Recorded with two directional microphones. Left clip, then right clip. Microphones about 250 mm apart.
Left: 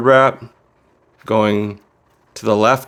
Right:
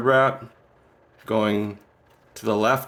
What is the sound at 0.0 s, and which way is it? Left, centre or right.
Speech, left.